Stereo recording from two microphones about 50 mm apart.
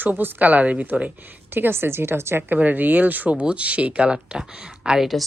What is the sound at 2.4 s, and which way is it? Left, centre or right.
Speech, right.